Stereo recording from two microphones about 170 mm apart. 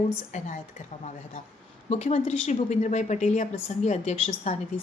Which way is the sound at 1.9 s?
40° left (ahead or behind).